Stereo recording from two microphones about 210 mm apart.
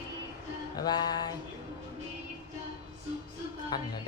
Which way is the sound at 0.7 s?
20° left (ahead or behind).